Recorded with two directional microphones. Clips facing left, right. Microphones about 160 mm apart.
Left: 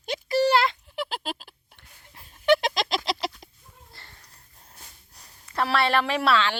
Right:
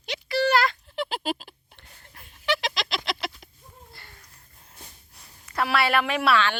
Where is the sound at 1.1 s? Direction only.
Centre (ahead or behind).